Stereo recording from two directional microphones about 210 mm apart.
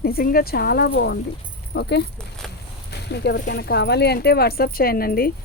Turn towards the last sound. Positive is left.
turn(degrees=45)  # may be behind; listen again after turning